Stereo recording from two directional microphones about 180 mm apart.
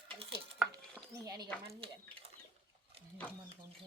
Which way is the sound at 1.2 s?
20° right (ahead or behind).